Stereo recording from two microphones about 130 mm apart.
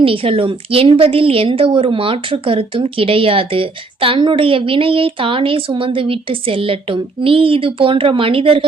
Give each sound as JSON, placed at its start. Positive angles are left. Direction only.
{"t": 0.0, "sound": "a woman's voice", "side_deg": -45}